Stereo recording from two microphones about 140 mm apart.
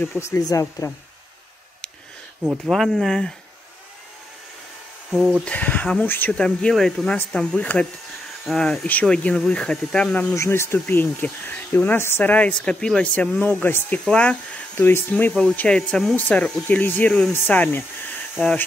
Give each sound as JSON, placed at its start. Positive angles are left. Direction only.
{"t": 0.0, "sound": "speech", "side_deg": 15}
{"t": 2.4, "sound": "speech", "side_deg": -10}
{"t": 2.7, "sound": "speech", "side_deg": 0}
{"t": 5.1, "sound": "speech", "side_deg": -10}
{"t": 5.4, "sound": "speech", "side_deg": 10}
{"t": 10.3, "sound": "speech", "side_deg": 20}